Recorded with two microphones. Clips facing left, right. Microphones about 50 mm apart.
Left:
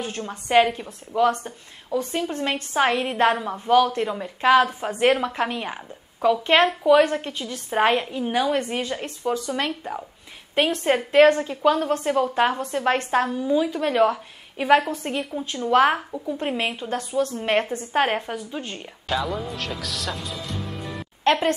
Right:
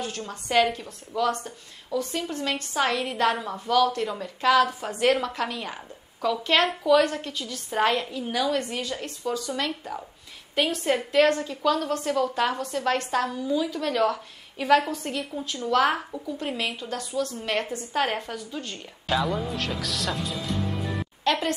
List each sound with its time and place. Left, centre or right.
0.0 s a woman's voice: left
19.0 s speech: centre
21.2 s a woman's voice: left